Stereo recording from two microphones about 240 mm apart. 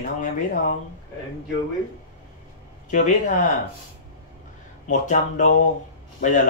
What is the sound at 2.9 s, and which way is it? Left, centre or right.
Speech, left.